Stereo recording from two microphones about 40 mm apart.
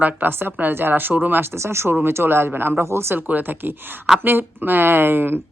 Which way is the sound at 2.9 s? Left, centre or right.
Right.